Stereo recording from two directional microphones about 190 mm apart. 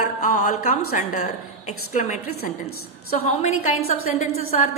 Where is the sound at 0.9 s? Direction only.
40° left (ahead or behind).